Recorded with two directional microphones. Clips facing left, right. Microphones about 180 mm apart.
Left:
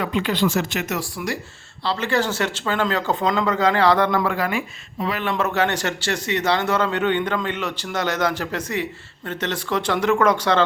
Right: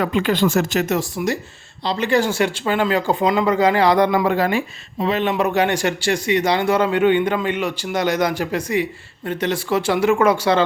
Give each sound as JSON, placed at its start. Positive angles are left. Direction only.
{"t": 0.0, "sound": "speech", "side_deg": -45}
{"t": 0.9, "sound": "speech", "side_deg": -25}